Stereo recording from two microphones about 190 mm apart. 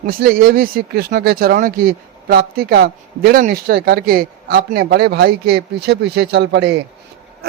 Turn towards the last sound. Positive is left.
turn(degrees=-65)  # may be behind; listen again after turning